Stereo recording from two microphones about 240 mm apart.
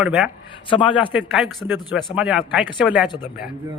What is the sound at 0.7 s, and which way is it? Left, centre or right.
Speech, left.